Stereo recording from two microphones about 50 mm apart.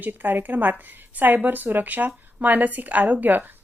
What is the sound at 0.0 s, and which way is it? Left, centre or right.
Speech, right.